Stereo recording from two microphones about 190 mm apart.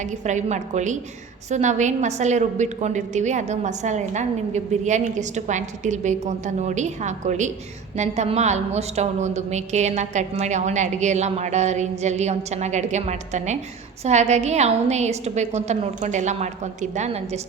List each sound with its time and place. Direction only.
0.0 s a woman's voice: 40° right (ahead or behind)